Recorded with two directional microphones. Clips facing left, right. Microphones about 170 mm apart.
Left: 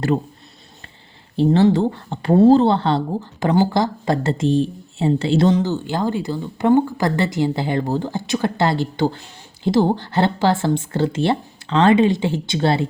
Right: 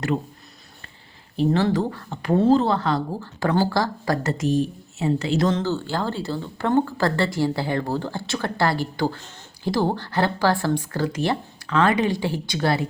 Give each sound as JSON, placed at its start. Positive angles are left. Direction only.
{"t": 1.4, "sound": "speech", "side_deg": 25}
{"t": 5.5, "sound": "speech", "side_deg": 15}